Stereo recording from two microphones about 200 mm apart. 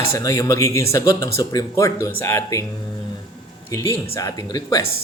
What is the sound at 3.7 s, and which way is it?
Speech, 15° left (ahead or behind).